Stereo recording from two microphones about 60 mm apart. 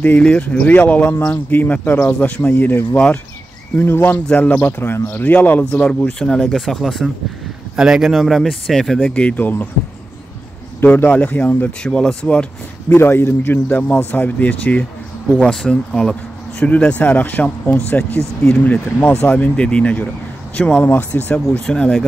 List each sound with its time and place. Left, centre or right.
0.2 s speech: centre
2.5 s a man's voice: left
5.6 s speech: centre
7.7 s speech: centre
9.1 s speech: left
10.8 s a man's voice: left
11.1 s speech: left
11.8 s speech: centre
12.9 s a man's voice: left
19.3 s speech: centre
20.8 s a man's voice: left
21.6 s speech: centre